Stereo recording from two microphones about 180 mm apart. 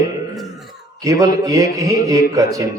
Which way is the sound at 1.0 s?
20° right (ahead or behind).